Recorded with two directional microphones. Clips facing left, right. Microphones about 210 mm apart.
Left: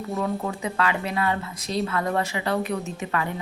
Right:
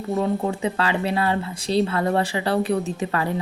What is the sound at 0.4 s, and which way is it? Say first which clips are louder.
A woman's voice: right 3 dB; 30° right (ahead or behind).